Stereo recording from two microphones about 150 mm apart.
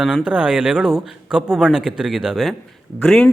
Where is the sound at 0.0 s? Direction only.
5° right (ahead or behind).